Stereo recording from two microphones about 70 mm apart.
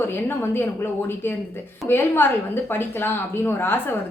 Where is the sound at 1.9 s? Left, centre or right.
Left.